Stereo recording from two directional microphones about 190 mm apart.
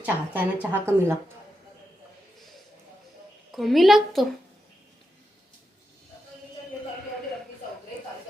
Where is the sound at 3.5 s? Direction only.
Centre (ahead or behind).